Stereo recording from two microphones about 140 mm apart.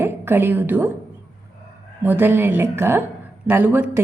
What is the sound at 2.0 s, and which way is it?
A woman's voice, 15° right (ahead or behind).